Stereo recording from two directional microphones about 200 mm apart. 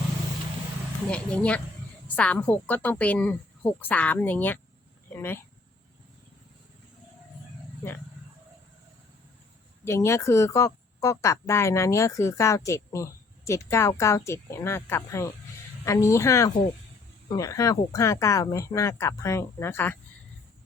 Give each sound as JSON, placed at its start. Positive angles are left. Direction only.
{"t": 1.1, "sound": "speech", "side_deg": 5}
{"t": 9.8, "sound": "speech", "side_deg": 15}